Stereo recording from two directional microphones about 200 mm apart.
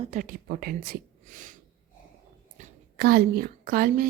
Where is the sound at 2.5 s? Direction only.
50° right (ahead or behind).